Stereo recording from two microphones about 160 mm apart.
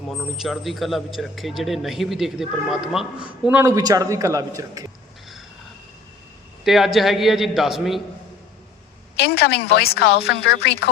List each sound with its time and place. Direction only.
0.1 s a man's voice: centre (ahead or behind)
3.5 s a man's voice: 15° right (ahead or behind)
6.7 s a man's voice: centre (ahead or behind)
9.1 s a woman's voice: 85° left